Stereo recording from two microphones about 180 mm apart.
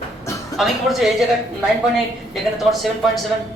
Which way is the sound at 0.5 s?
Centre (ahead or behind).